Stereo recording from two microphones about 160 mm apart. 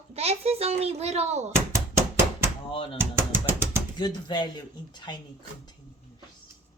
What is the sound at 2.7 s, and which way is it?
Speech, 35° left (ahead or behind).